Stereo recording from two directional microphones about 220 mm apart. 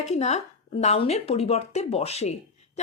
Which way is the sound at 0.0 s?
30° left (ahead or behind).